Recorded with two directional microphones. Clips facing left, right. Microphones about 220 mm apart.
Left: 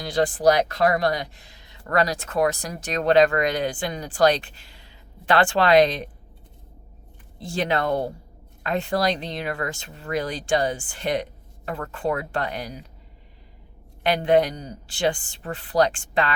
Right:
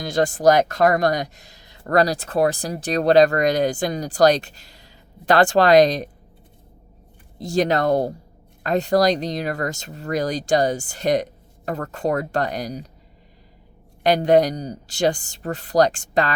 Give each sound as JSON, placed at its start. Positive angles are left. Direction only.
{"t": 0.0, "sound": "speech", "side_deg": -45}
{"t": 7.3, "sound": "speech", "side_deg": -40}
{"t": 14.0, "sound": "speech", "side_deg": -40}